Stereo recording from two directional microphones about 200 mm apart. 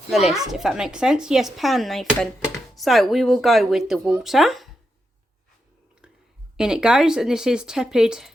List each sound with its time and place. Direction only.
0.1 s speech: centre (ahead or behind)
6.6 s speech: 5° right (ahead or behind)